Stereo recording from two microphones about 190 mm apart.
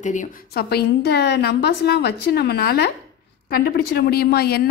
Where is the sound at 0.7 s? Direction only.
60° left (ahead or behind).